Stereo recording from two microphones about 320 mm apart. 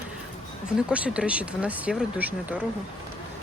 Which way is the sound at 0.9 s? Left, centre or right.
Centre.